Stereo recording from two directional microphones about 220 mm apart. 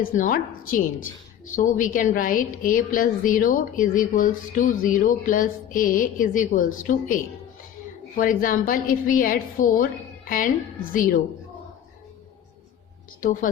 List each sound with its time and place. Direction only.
0.0 s a woman's voice: 40° left (ahead or behind)